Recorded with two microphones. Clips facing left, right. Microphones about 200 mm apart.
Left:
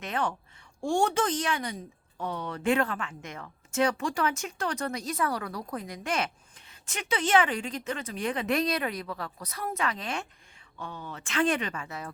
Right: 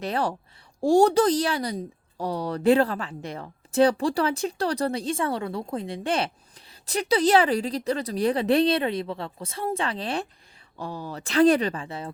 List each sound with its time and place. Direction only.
0.0 s a woman's voice: 35° right (ahead or behind)